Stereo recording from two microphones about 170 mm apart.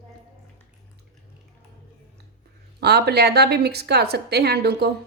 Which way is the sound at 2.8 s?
70° right (ahead or behind).